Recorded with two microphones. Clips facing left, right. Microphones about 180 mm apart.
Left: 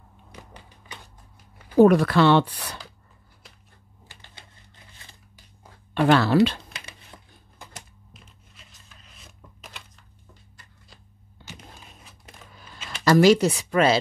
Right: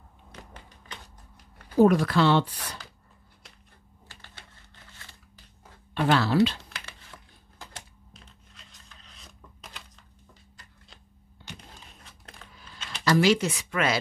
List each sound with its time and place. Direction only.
0.3 s a sound: 10° left (ahead or behind)
1.8 s speech: 65° left (ahead or behind)
4.1 s typewriter: 15° left (ahead or behind)
5.9 s speech: 60° left (ahead or behind)
6.7 s crumpling: 20° left (ahead or behind)
8.1 s a sound: 5° left (ahead or behind)
10.5 s shuffling cards: centre (ahead or behind)
12.0 s a sound: 5° left (ahead or behind)
13.0 s speech: 45° left (ahead or behind)